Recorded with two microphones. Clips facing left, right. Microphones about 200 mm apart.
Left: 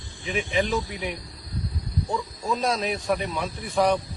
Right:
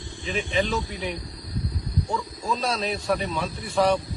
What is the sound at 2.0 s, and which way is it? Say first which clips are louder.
Speech: left 2 dB; 15° left (ahead or behind).